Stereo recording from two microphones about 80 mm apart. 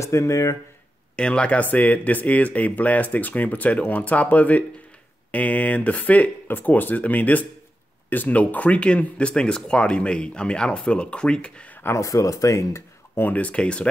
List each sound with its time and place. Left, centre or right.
0.0 s speech: left
1.1 s speech: centre
11.8 s speech: left
13.2 s speech: centre